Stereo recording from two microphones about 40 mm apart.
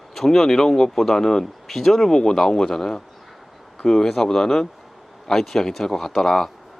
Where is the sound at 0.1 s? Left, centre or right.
Centre.